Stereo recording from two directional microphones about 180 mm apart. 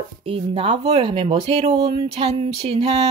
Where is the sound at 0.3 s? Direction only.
35° right (ahead or behind).